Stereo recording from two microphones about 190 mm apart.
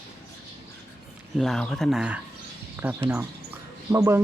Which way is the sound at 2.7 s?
10° right (ahead or behind).